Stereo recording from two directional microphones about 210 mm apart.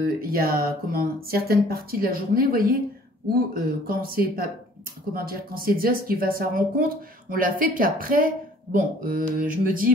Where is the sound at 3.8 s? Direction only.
45° right (ahead or behind).